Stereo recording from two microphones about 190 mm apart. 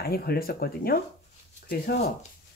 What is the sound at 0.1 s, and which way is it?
Speech, 55° left (ahead or behind).